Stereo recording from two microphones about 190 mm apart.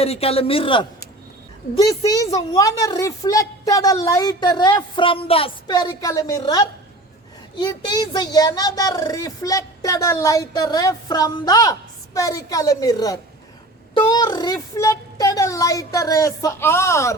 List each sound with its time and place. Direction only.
0.0 s speech: 30° left (ahead or behind); by 17.2 s 15° left (ahead or behind)